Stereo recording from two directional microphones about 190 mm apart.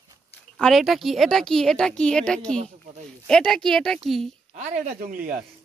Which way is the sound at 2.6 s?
35° right (ahead or behind).